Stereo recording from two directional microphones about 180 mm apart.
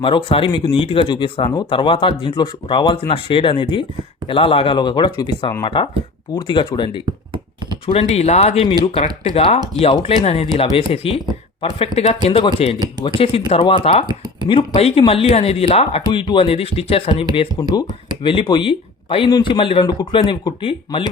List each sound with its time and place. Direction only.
0.0 s speech: 30° left (ahead or behind)